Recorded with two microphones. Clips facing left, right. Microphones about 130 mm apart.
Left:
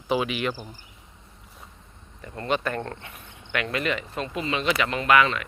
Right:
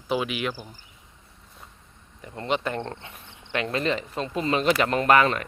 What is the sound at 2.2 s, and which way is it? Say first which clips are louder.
Speech: even; 20° right (ahead or behind).